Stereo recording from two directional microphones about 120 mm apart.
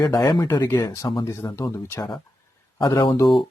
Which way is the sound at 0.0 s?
35° left (ahead or behind).